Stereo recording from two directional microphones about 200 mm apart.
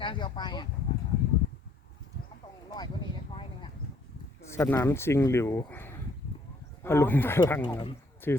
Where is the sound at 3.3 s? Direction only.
25° left (ahead or behind).